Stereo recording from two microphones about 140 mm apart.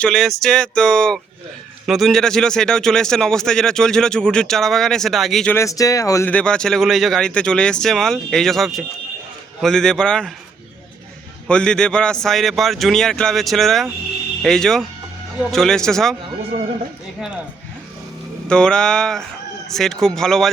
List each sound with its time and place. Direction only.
0.0 s speech: 5° left (ahead or behind)
5.5 s speech: 20° left (ahead or behind)
6.2 s speech: 10° left (ahead or behind)
11.4 s speech: 5° left (ahead or behind)
18.4 s speech: 5° left (ahead or behind)